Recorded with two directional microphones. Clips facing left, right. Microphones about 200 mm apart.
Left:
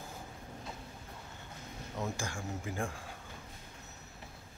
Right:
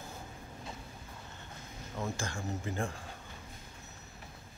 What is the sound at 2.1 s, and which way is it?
Speech, 10° left (ahead or behind).